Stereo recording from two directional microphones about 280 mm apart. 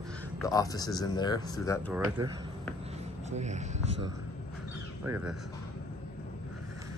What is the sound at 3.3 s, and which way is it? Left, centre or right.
Speech, right.